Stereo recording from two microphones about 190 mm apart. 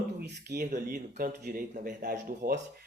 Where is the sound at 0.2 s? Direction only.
55° right (ahead or behind).